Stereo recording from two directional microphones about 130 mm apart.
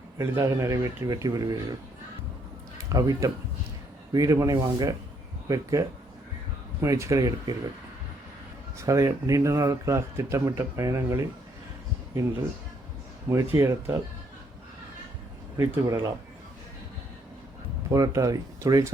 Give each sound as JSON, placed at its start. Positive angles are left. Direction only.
{"t": 0.2, "sound": "a man's voice", "side_deg": -20}
{"t": 2.9, "sound": "a man's voice", "side_deg": -25}
{"t": 8.8, "sound": "a man's voice", "side_deg": -25}
{"t": 13.3, "sound": "a man's voice", "side_deg": -20}
{"t": 15.5, "sound": "a man's voice", "side_deg": -20}
{"t": 17.9, "sound": "a man's voice", "side_deg": -25}